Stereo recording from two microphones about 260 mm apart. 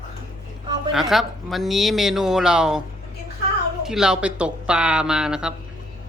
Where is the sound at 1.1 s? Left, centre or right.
Centre.